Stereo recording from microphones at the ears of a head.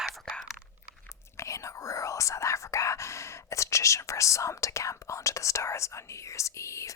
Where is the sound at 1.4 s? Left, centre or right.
Left.